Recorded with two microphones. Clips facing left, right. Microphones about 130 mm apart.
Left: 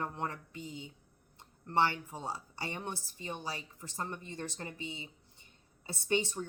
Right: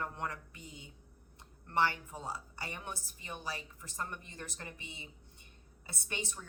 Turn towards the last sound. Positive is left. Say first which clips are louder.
# left 10 dB
turn(degrees=30)  # may be behind; listen again after turning